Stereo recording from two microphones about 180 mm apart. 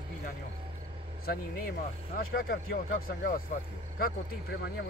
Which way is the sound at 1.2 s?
55° left (ahead or behind).